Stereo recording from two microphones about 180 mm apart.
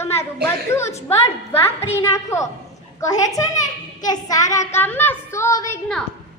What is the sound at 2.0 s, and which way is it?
A woman's voice, 15° left (ahead or behind).